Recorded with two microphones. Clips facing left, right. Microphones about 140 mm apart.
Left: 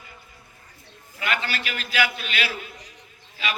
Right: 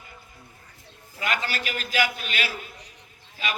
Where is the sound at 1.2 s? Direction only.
40° right (ahead or behind).